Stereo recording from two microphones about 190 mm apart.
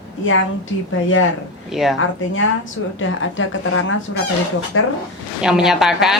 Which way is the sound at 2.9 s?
90° left.